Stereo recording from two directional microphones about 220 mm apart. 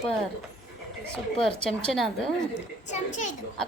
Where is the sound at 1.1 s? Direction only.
Centre (ahead or behind).